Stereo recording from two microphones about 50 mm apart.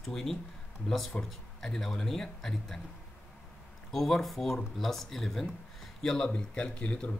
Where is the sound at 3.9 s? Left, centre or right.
Centre; by 7.1 s left.